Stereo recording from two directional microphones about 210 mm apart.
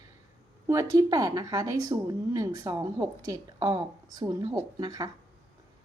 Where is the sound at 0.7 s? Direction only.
15° right (ahead or behind).